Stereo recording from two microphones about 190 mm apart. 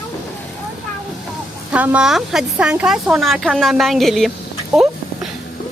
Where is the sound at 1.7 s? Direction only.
5° right (ahead or behind).